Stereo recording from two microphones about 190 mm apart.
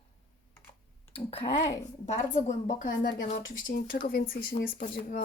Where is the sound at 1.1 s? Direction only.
30° left (ahead or behind).